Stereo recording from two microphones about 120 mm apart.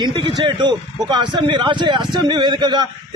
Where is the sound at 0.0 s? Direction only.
40° right (ahead or behind).